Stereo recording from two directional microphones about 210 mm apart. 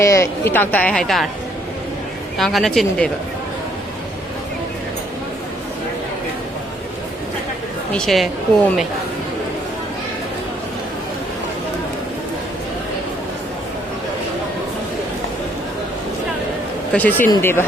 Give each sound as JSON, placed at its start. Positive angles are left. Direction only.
{"t": 0.0, "sound": "speech", "side_deg": 15}
{"t": 2.4, "sound": "a woman's voice", "side_deg": 0}
{"t": 7.9, "sound": "a woman's voice", "side_deg": 0}
{"t": 16.9, "sound": "speech", "side_deg": 10}